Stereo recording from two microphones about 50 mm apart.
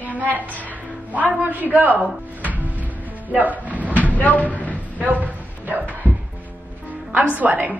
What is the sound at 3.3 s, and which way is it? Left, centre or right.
Speech, right.